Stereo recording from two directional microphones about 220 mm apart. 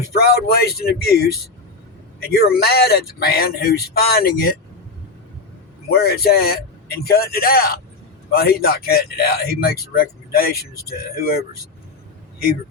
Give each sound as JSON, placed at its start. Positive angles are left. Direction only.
{"t": 0.4, "sound": "speech", "side_deg": 45}
{"t": 2.3, "sound": "speech", "side_deg": 45}
{"t": 5.9, "sound": "speech", "side_deg": 45}